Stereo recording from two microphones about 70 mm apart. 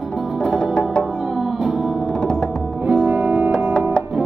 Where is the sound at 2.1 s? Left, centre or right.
Centre.